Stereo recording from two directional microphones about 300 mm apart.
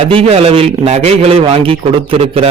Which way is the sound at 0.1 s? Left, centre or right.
Centre.